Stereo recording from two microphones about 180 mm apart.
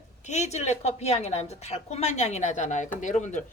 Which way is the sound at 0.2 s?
40° left (ahead or behind).